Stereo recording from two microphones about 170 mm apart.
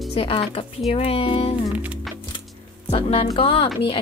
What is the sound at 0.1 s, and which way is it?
Speech, 35° left (ahead or behind).